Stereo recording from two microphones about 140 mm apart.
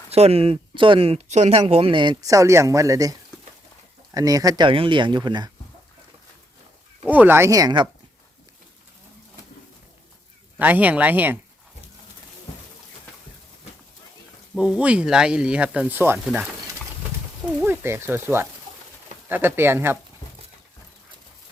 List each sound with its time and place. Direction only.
0.1 s speech: 45° right (ahead or behind)
7.0 s speech: 10° right (ahead or behind); by 7.9 s 30° right (ahead or behind)
10.6 s speech: 10° right (ahead or behind)
14.5 s speech: 5° right (ahead or behind)
16.2 s speech: 5° right (ahead or behind)
17.6 s speech: 15° right (ahead or behind)